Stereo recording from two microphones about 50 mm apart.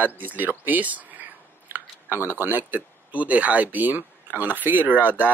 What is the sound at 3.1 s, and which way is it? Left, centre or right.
Speech, right.